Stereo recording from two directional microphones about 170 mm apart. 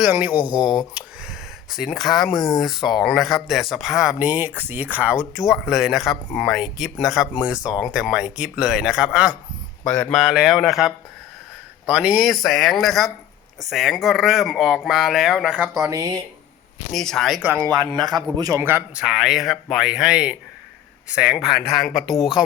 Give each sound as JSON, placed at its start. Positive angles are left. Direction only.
{"t": 0.0, "sound": "speech", "side_deg": -10}
{"t": 9.8, "sound": "speech", "side_deg": 5}
{"t": 15.8, "sound": "speech", "side_deg": -20}
{"t": 16.9, "sound": "speech", "side_deg": 5}
{"t": 17.7, "sound": "speech", "side_deg": -20}